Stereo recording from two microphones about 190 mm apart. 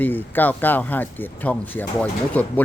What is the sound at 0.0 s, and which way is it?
Speech, 10° left (ahead or behind).